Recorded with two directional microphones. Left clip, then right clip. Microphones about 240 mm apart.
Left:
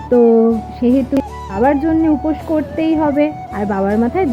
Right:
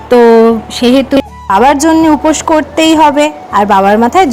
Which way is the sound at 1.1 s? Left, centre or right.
Centre.